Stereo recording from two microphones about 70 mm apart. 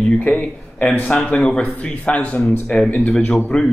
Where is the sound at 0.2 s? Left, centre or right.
Centre.